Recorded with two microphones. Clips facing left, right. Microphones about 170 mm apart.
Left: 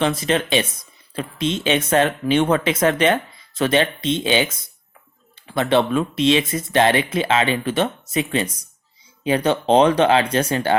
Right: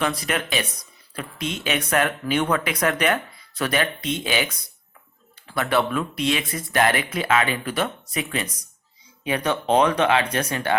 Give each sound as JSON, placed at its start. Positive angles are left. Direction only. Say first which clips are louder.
{"t": 0.0, "sound": "speech", "louder": "left 5 dB", "side_deg": 25}